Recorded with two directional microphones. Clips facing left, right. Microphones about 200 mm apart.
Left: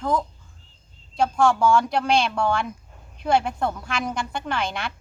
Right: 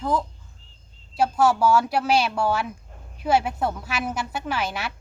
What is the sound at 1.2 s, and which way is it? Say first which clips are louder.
A woman's voice: even; 5° right (ahead or behind).